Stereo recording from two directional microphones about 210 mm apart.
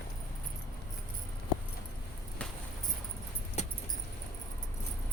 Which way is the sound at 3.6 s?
30° left (ahead or behind).